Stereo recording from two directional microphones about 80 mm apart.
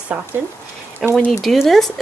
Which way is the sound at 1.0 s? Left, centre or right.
Centre.